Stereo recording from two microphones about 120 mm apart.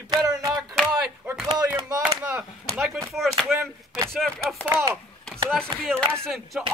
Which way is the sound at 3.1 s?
Centre (ahead or behind).